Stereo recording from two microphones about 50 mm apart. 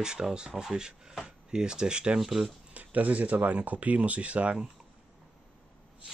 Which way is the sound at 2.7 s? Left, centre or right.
Right.